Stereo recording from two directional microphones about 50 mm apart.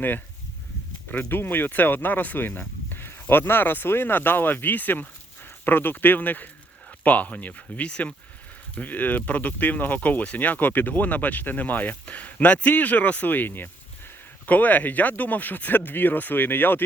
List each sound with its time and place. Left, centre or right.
1.1 s speech: left